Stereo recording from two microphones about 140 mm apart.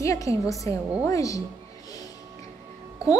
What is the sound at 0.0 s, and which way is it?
A woman's voice, 20° left (ahead or behind).